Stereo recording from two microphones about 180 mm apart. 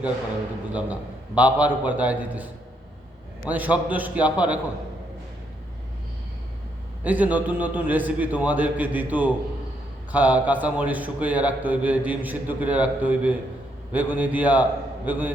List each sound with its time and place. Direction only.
0.7 s a man's voice: 5° right (ahead or behind)
3.5 s a man's voice: 10° right (ahead or behind)
7.0 s a man's voice: 10° right (ahead or behind)